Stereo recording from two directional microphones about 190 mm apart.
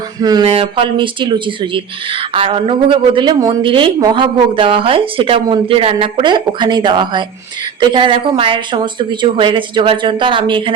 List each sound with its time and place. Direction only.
0.2 s speech: 20° right (ahead or behind)